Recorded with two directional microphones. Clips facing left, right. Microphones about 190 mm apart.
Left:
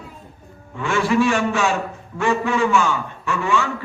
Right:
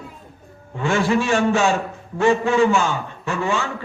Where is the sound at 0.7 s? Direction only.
30° right (ahead or behind).